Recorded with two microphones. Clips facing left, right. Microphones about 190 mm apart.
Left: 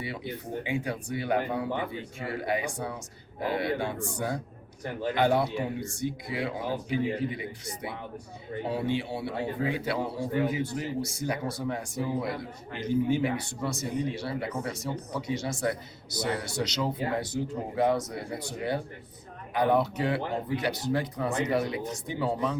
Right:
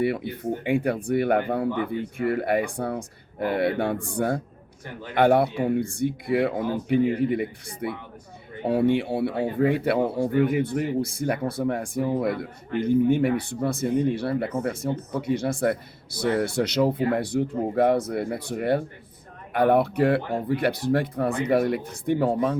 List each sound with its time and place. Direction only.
0.0 s speech: 55° right (ahead or behind)